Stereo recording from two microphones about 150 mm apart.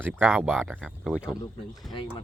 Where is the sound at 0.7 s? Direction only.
Centre (ahead or behind).